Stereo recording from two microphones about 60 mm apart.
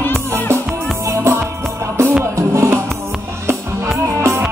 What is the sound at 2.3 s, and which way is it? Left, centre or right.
Music, right.